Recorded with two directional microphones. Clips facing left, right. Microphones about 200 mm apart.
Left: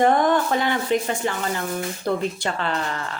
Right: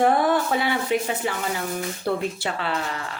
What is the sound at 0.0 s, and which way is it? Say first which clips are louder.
Speech: left 1 dB; 5° right (ahead or behind).